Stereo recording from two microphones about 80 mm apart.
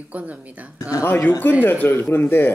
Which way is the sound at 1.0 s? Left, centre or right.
Left.